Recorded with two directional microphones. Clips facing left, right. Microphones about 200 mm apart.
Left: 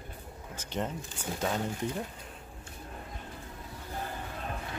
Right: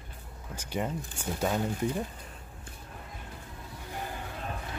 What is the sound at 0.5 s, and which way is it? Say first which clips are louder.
Speech: right 2 dB; 10° right (ahead or behind).